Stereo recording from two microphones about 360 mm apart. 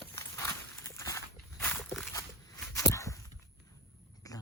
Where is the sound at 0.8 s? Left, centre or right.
Centre.